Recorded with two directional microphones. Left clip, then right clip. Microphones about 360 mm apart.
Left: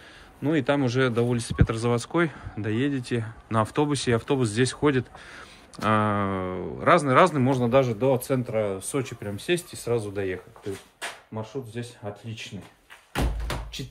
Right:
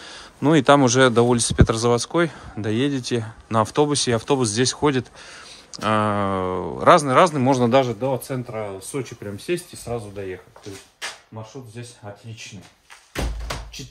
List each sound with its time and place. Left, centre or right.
0.0 s speech: centre
7.5 s a man's voice: right
7.8 s speech: centre